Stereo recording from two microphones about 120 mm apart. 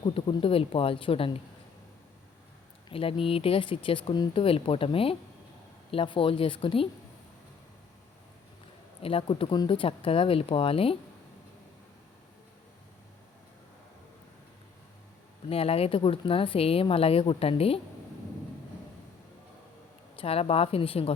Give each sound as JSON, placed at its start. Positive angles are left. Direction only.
{"t": 0.0, "sound": "speech", "side_deg": 40}
{"t": 2.9, "sound": "speech", "side_deg": 50}
{"t": 9.0, "sound": "speech", "side_deg": 50}
{"t": 15.4, "sound": "speech", "side_deg": 55}
{"t": 20.1, "sound": "speech", "side_deg": 55}